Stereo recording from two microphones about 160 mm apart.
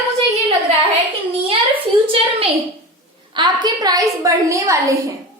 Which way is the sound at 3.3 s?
30° right (ahead or behind).